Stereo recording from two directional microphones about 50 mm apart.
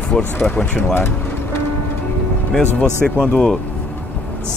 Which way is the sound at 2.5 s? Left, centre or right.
Centre.